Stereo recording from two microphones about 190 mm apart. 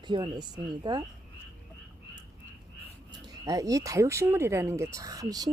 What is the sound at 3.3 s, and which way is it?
Speech, 20° right (ahead or behind).